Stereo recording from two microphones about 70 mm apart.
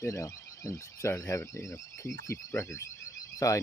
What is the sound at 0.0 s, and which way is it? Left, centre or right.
Speech, left.